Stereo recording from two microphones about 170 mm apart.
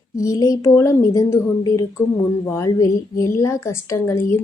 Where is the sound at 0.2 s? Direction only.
20° left (ahead or behind).